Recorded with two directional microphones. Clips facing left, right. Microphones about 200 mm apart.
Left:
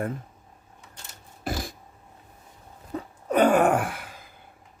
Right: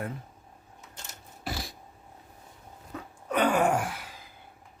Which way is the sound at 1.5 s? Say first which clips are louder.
Left 5 dB; 50° left (ahead or behind).